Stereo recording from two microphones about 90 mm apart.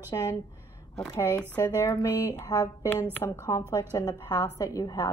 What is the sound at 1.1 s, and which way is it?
Speech, 35° left (ahead or behind).